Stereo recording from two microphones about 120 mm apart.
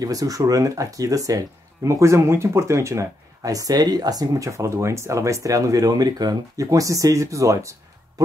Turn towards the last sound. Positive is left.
turn(degrees=-25)  # may be behind; listen again after turning